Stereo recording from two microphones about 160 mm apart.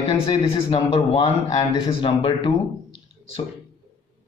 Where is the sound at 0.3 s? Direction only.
35° left (ahead or behind).